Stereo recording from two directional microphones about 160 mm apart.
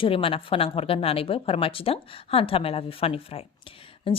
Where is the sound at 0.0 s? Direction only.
35° left (ahead or behind).